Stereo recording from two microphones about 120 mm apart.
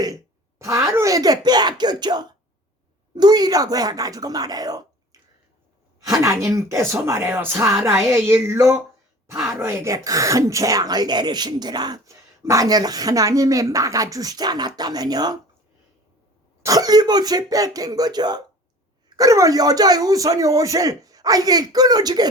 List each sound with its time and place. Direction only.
0.6 s speech: 25° right (ahead or behind)
6.1 s speech: 25° right (ahead or behind)
16.6 s speech: 30° right (ahead or behind)